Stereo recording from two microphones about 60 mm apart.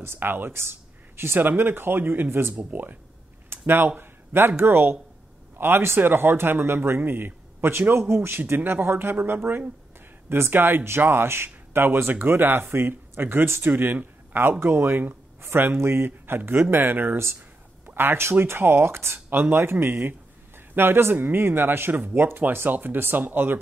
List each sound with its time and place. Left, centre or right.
0.0 s speech: right
3.4 s a sound: right
4.0 s speech: right